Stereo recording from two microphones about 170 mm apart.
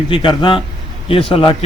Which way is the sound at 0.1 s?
30° left (ahead or behind).